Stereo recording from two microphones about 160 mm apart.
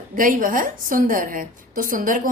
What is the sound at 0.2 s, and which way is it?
Speech, 60° right (ahead or behind).